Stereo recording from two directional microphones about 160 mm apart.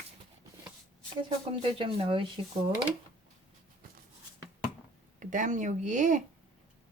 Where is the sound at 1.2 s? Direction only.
30° right (ahead or behind).